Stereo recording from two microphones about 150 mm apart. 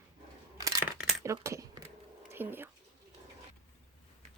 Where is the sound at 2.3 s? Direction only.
15° right (ahead or behind).